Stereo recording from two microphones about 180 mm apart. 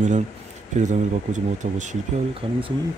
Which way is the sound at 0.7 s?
45° right (ahead or behind).